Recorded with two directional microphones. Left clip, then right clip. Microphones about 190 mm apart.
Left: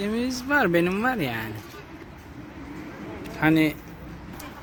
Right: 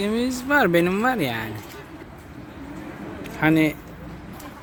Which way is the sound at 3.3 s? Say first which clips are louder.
Right 2 dB; centre (ahead or behind).